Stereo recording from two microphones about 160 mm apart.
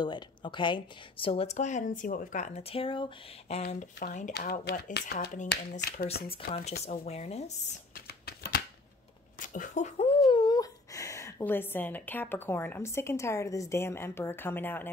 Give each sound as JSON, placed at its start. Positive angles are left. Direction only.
{"t": 0.0, "sound": "speech", "side_deg": 30}
{"t": 4.0, "sound": "speech", "side_deg": 50}
{"t": 4.3, "sound": "speech", "side_deg": 80}
{"t": 6.9, "sound": "speech", "side_deg": 45}
{"t": 7.9, "sound": "a sound", "side_deg": 75}
{"t": 9.5, "sound": "speech", "side_deg": 50}